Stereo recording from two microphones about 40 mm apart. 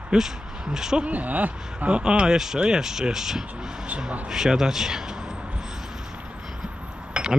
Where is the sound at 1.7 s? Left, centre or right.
Right.